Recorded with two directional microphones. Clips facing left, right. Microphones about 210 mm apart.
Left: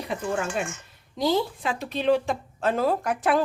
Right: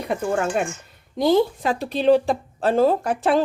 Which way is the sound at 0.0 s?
55° right (ahead or behind).